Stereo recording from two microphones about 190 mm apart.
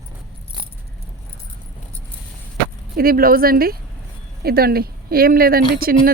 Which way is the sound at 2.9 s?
50° right (ahead or behind).